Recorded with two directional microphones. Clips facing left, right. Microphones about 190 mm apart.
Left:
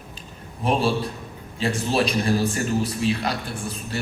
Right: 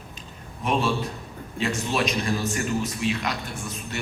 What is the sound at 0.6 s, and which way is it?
A man's voice, 30° left (ahead or behind).